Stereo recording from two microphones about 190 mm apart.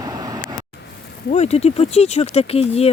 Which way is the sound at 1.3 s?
35° left (ahead or behind).